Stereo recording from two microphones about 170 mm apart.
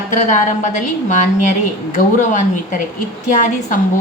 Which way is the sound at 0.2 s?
50° left (ahead or behind).